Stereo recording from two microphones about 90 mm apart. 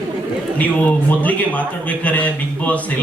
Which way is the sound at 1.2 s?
15° left (ahead or behind).